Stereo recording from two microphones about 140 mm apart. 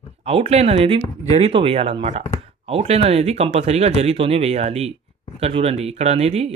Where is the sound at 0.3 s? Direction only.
45° right (ahead or behind).